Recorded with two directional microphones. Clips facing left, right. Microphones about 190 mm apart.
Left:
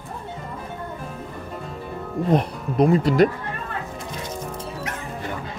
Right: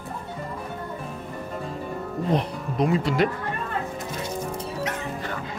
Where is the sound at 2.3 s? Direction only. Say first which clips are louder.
Left 5 dB; 45° left (ahead or behind).